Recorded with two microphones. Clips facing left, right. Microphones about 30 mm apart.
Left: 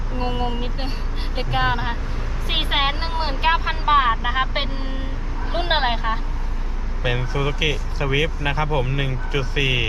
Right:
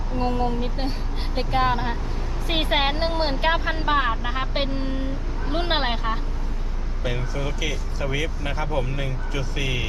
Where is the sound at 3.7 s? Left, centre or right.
Left; by 6.2 s centre.